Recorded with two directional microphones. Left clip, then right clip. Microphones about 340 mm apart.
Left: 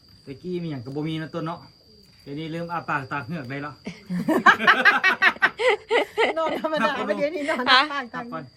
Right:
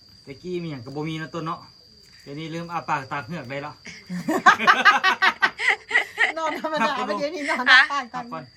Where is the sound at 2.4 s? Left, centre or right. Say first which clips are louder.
Even; right.